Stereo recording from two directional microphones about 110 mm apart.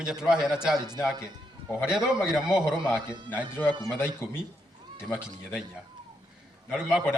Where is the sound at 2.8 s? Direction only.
25° left (ahead or behind).